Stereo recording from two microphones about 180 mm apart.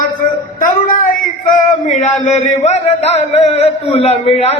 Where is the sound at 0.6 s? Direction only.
50° left (ahead or behind).